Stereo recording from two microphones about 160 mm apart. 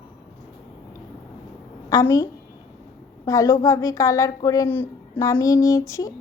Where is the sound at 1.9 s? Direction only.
20° left (ahead or behind).